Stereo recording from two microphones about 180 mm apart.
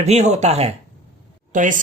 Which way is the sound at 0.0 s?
40° right (ahead or behind).